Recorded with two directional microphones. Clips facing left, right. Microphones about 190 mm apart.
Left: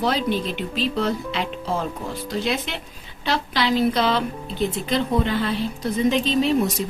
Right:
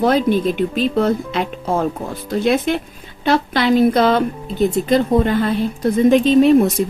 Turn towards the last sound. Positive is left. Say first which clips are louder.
# right 9 dB
turn(degrees=-50)  # may be behind; listen again after turning